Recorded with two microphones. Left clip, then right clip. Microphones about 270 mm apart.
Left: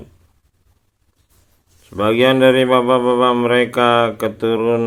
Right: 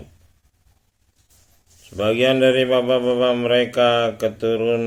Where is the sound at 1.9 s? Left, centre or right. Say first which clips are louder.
Left 4 dB; centre.